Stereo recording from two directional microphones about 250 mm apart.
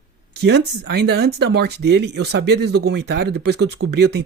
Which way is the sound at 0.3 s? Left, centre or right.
Right.